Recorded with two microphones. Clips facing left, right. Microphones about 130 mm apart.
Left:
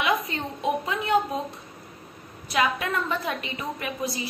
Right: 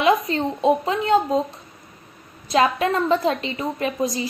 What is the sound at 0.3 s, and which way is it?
A woman's voice, 35° right (ahead or behind).